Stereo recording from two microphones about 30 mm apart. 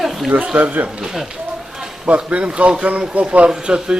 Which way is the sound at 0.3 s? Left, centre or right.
Right.